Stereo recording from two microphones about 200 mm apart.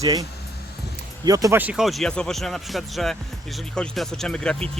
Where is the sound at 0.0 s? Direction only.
15° right (ahead or behind).